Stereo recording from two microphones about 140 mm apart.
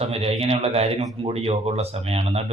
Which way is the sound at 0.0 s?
45° right (ahead or behind).